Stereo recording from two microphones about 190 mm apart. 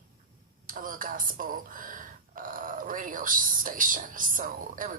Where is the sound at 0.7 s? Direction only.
45° right (ahead or behind).